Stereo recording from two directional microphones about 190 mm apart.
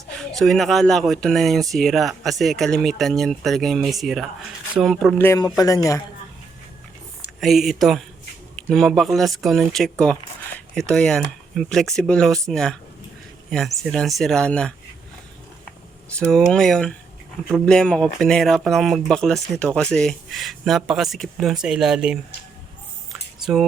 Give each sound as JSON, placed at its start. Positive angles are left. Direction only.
{"t": 0.3, "sound": "speech", "side_deg": 0}
{"t": 5.1, "sound": "a man's voice", "side_deg": 15}
{"t": 7.4, "sound": "speech", "side_deg": 0}
{"t": 16.1, "sound": "speech", "side_deg": 5}